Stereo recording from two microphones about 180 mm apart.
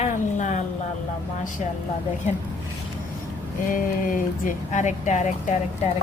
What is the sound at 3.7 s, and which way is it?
Speech, 50° left (ahead or behind).